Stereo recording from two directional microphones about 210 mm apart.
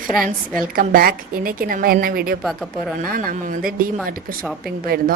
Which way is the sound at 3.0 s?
40° right (ahead or behind).